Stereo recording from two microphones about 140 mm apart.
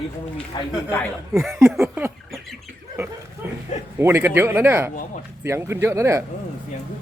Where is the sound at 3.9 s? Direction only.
15° right (ahead or behind).